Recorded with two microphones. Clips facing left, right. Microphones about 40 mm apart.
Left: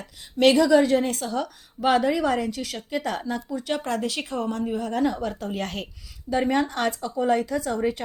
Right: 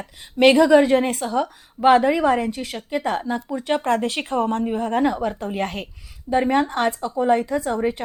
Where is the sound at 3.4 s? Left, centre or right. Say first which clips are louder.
Right 5 dB; right.